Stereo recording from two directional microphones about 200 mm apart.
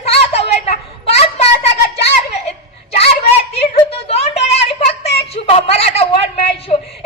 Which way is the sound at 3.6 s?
30° left (ahead or behind).